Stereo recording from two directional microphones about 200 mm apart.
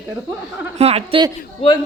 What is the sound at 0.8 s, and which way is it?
Speech, 30° right (ahead or behind).